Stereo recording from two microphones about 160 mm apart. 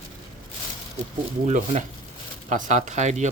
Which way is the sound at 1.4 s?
50° right (ahead or behind).